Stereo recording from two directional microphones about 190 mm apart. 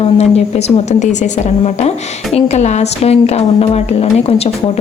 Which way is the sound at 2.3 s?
35° left (ahead or behind).